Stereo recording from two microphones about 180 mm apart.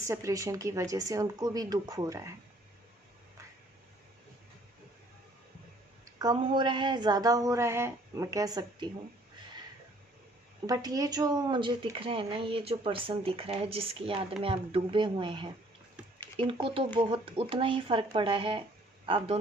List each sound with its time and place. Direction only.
0.1 s speech: 15° right (ahead or behind)
6.1 s speech: 25° right (ahead or behind)
10.7 s a man's voice: 20° right (ahead or behind)